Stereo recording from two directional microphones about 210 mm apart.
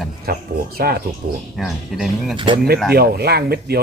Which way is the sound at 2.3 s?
25° right (ahead or behind).